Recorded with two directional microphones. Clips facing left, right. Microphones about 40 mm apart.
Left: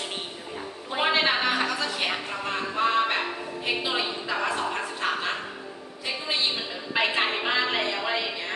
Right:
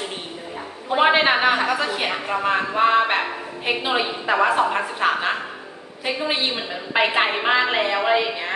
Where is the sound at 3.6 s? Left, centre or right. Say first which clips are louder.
Right 6 dB; right.